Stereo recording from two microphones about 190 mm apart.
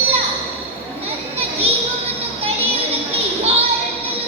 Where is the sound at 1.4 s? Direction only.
30° right (ahead or behind).